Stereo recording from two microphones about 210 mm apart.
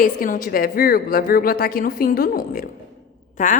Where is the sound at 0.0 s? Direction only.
40° left (ahead or behind).